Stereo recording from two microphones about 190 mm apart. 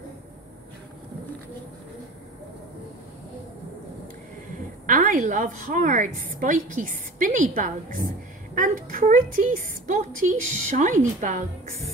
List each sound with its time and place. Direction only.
4.8 s a woman's voice: 40° right (ahead or behind)